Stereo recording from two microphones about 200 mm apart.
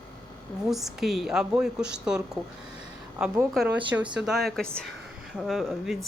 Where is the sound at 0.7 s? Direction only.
Centre (ahead or behind).